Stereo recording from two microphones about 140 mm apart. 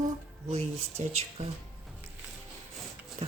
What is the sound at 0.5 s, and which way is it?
Speech, 50° right (ahead or behind).